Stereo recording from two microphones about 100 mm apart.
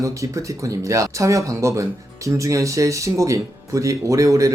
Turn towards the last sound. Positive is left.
turn(degrees=-35)  # may be behind; listen again after turning